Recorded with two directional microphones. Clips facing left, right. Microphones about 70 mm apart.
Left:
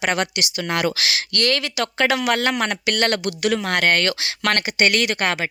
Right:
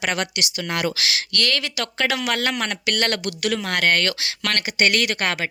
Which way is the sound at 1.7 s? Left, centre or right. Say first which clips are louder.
Left 4 dB; left.